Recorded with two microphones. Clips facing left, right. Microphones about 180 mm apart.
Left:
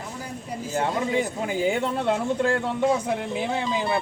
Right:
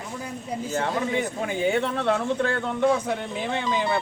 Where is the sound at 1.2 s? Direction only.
10° left (ahead or behind).